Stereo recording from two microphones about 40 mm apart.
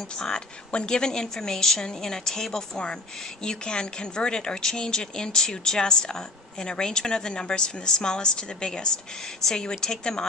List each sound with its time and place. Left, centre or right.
0.7 s a woman's voice: left